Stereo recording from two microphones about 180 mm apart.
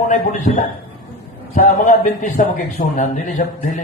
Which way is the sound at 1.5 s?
45° left (ahead or behind).